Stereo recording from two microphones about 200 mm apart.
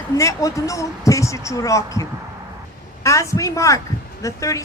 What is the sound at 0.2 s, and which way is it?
A woman's voice, 15° left (ahead or behind).